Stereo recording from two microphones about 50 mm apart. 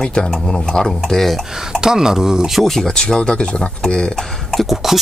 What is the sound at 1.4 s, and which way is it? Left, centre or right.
Speech, centre.